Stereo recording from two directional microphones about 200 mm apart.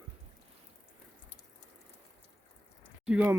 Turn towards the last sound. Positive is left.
turn(degrees=-5)  # may be behind; listen again after turning